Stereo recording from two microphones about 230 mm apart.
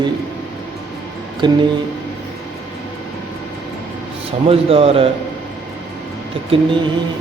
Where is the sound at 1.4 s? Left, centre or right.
Centre.